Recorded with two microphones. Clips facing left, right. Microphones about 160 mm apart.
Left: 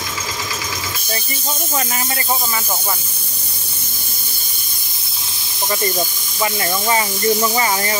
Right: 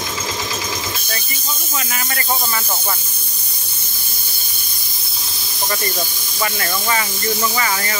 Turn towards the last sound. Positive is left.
turn(degrees=25)  # may be behind; listen again after turning